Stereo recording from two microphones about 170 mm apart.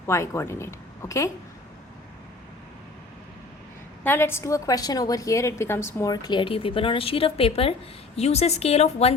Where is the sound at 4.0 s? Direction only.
15° left (ahead or behind).